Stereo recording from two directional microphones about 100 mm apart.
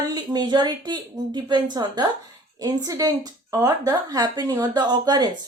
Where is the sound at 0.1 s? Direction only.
45° right (ahead or behind).